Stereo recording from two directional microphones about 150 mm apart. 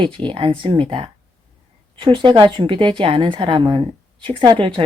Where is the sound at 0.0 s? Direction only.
35° right (ahead or behind).